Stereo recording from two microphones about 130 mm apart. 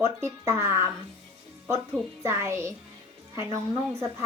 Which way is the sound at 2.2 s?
20° right (ahead or behind).